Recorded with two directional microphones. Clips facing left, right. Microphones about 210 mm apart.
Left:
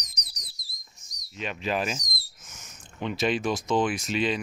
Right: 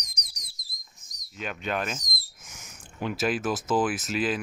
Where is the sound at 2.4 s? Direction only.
10° right (ahead or behind).